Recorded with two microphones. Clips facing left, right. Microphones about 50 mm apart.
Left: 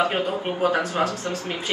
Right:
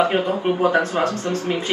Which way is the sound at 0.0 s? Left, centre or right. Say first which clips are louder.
Right 4 dB; right.